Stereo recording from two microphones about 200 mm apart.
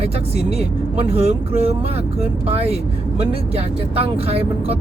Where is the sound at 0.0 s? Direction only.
30° right (ahead or behind).